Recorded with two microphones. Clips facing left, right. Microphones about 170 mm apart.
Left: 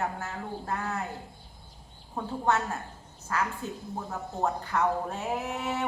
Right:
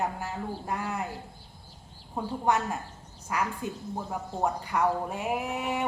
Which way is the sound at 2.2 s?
15° right (ahead or behind).